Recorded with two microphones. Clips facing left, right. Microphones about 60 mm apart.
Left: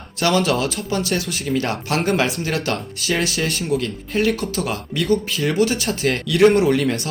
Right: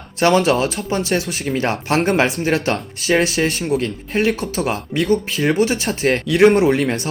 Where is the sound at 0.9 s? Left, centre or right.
Right.